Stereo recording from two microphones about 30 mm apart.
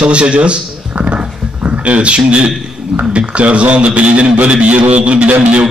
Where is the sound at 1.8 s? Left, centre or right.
Right.